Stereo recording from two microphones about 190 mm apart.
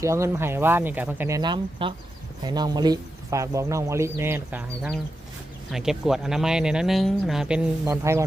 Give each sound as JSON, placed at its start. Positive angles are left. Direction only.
{"t": 0.0, "sound": "speech", "side_deg": -15}
{"t": 1.4, "sound": "speech", "side_deg": -25}
{"t": 7.9, "sound": "speech", "side_deg": -15}